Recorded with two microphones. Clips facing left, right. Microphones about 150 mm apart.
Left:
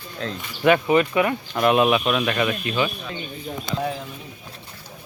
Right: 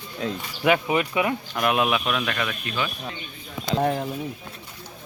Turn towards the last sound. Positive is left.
turn(degrees=-55)  # may be behind; listen again after turning